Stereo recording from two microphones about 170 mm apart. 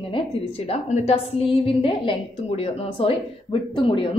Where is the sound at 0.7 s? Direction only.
40° left (ahead or behind).